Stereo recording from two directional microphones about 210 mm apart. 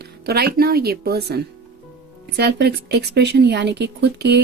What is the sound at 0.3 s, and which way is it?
Speech, 50° right (ahead or behind).